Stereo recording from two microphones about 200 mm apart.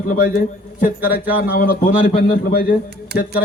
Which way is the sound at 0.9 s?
10° right (ahead or behind).